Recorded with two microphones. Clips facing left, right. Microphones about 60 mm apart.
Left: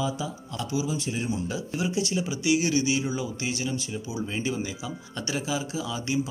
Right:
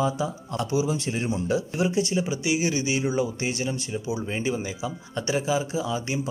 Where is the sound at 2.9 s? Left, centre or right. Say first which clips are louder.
Right 4 dB; right.